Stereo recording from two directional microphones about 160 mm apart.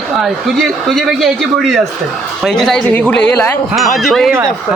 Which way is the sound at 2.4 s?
Centre (ahead or behind).